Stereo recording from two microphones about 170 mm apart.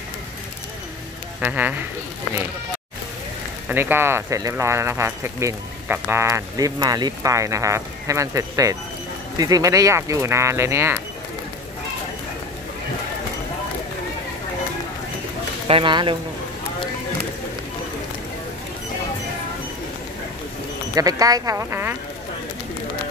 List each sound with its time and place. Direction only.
1.4 s speech: 10° right (ahead or behind)
3.6 s speech: 15° right (ahead or behind)
15.7 s speech: 30° right (ahead or behind)
20.9 s speech: 20° right (ahead or behind)